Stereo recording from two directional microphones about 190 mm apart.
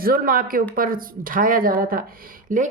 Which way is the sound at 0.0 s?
50° right (ahead or behind).